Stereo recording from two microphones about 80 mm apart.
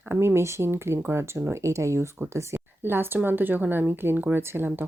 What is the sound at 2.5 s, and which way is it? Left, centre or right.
Speech, right.